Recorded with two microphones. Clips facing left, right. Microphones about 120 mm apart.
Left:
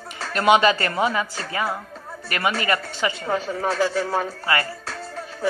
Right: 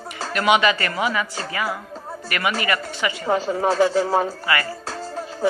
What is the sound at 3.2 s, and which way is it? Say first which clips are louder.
Speech: right 7 dB; 30° right (ahead or behind).